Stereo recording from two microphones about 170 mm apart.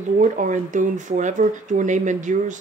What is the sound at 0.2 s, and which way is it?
Speech, 45° right (ahead or behind).